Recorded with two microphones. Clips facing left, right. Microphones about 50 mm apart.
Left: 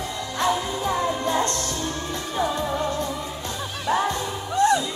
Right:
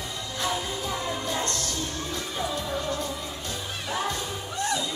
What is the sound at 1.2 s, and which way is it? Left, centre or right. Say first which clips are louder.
Music: left 7 dB; left.